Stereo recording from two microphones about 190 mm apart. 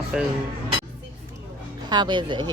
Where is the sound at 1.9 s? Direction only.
25° right (ahead or behind).